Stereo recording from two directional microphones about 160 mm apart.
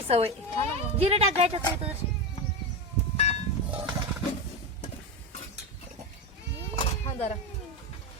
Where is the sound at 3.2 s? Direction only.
40° left (ahead or behind).